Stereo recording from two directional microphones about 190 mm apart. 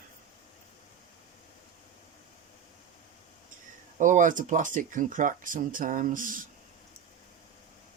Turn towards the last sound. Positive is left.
turn(degrees=-45)  # may be behind; listen again after turning